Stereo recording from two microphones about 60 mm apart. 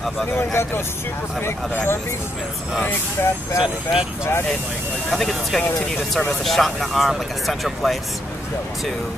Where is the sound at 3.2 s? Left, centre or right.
Left.